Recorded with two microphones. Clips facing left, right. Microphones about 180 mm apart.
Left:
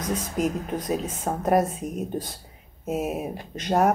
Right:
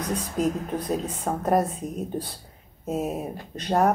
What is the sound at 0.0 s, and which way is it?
Speech, centre (ahead or behind).